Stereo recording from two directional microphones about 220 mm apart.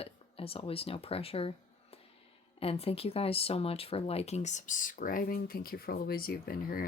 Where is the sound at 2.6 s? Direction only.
25° left (ahead or behind).